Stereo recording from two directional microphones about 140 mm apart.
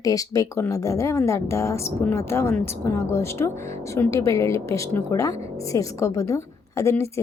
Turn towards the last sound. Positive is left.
turn(degrees=20)  # may be behind; listen again after turning